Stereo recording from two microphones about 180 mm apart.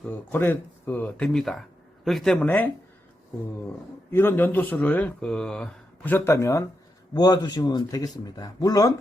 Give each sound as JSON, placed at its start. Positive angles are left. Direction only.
{"t": 0.0, "sound": "speech", "side_deg": 10}
{"t": 4.1, "sound": "speech", "side_deg": 10}